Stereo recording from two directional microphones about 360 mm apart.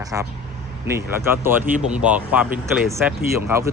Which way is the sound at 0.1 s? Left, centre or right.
Centre.